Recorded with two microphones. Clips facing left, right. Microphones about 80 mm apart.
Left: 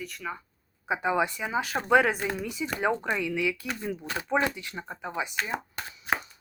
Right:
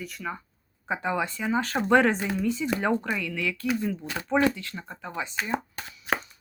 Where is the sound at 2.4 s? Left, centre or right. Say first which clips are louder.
Right 4 dB; centre.